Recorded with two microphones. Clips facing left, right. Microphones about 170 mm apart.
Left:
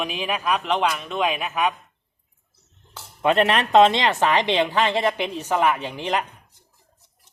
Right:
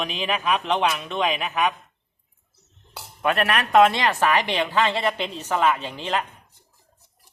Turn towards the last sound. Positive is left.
turn(degrees=15)  # may be behind; listen again after turning